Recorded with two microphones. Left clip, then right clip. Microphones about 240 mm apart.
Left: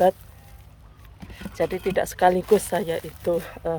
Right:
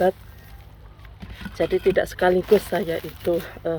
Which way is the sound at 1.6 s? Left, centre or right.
Centre.